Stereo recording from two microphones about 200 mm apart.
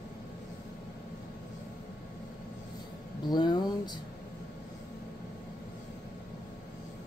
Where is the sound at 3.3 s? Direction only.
20° left (ahead or behind).